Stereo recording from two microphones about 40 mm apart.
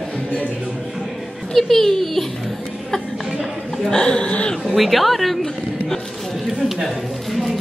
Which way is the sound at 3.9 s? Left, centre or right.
Left.